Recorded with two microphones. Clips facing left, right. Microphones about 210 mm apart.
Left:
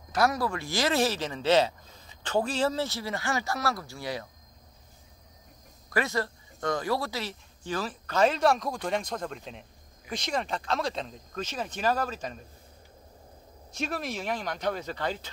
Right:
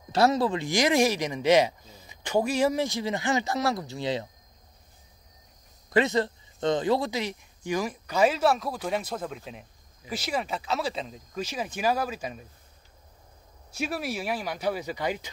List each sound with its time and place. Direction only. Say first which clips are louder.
0.1 s speech: right 4 dB; 25° right (ahead or behind)
5.9 s speech: right 5 dB; 20° right (ahead or behind)
13.7 s speech: right 2 dB; 10° right (ahead or behind)